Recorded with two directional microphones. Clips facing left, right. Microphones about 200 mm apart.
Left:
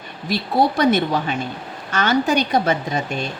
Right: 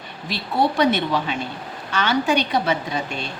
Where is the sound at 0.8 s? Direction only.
45° left (ahead or behind).